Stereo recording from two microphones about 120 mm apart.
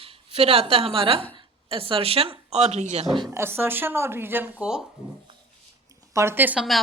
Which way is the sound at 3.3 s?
20° right (ahead or behind).